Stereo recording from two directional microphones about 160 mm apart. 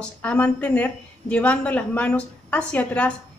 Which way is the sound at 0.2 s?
10° left (ahead or behind).